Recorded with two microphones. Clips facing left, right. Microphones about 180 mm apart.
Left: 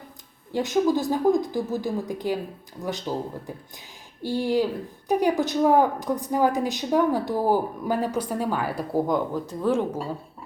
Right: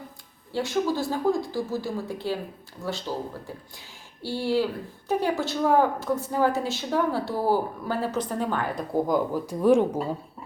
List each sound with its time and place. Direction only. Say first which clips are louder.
0.5 s a woman's voice: left 4 dB; 15° left (ahead or behind); by 10.0 s 15° right (ahead or behind)